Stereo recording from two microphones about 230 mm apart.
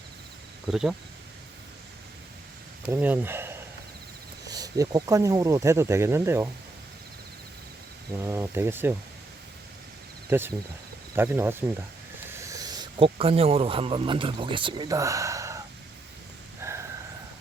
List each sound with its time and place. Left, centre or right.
0.7 s speech: centre
2.9 s speech: centre
8.2 s speech: centre
10.2 s speech: centre
16.6 s a sound: centre